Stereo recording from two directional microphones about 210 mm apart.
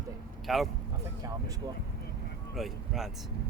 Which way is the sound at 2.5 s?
Centre (ahead or behind).